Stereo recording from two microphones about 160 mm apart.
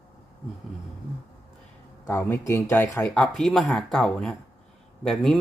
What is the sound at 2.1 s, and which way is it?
Speech, 15° left (ahead or behind).